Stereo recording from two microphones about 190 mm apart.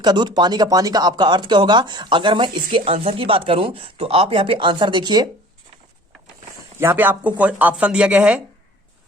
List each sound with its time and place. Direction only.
0.0 s speech: 20° right (ahead or behind)
6.7 s speech: 10° right (ahead or behind)